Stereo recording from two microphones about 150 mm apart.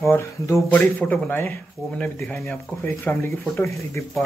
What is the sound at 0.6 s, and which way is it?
Speech, 10° left (ahead or behind).